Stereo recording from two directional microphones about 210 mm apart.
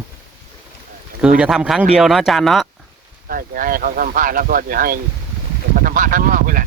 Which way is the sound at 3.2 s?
45° right (ahead or behind).